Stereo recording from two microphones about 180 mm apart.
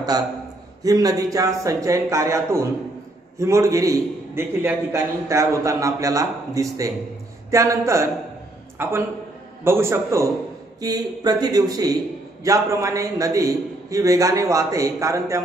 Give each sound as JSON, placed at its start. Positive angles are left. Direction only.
{"t": 0.8, "sound": "a man's voice", "side_deg": -20}